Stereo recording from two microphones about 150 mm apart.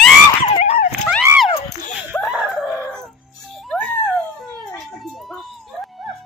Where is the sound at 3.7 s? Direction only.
5° left (ahead or behind).